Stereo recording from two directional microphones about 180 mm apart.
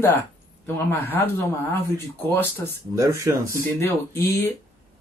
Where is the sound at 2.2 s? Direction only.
10° left (ahead or behind).